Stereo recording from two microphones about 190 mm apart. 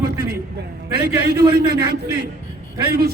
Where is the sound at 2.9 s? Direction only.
55° right (ahead or behind).